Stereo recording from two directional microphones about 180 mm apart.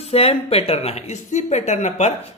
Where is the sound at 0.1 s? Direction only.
35° left (ahead or behind).